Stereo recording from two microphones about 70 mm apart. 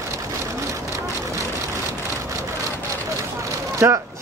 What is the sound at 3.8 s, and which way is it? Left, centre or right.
Speech, right.